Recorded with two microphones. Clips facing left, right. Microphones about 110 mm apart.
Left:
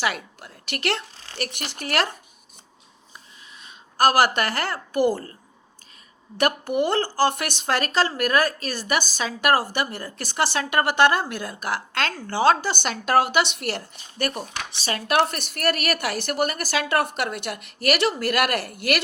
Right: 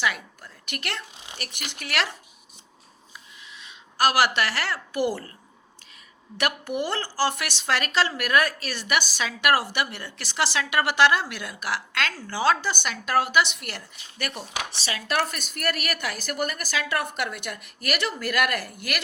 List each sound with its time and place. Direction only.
0.0 s a woman's voice: 60° left (ahead or behind)
1.1 s a woman's voice: 15° right (ahead or behind)
1.4 s speech: 55° left (ahead or behind)
3.6 s a woman's voice: 45° left (ahead or behind)
6.3 s a woman's voice: 45° left (ahead or behind)